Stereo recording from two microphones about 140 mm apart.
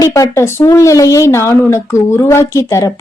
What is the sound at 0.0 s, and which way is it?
Speech, 25° left (ahead or behind).